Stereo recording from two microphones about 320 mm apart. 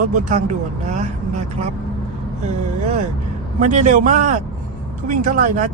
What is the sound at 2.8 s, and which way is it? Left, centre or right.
Speech, right.